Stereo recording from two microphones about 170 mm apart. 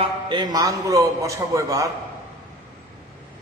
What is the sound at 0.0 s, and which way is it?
A man's voice, 25° right (ahead or behind).